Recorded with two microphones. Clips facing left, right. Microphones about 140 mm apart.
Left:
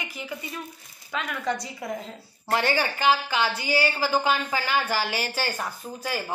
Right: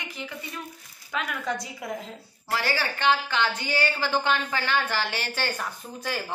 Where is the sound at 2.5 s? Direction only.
20° left (ahead or behind).